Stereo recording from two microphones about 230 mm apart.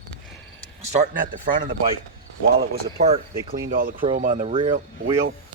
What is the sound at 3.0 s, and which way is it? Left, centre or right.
A man's voice, right.